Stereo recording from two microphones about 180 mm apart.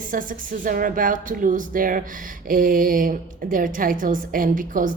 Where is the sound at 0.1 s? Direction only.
50° right (ahead or behind).